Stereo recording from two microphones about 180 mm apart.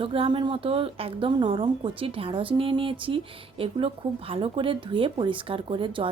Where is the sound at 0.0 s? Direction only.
30° right (ahead or behind).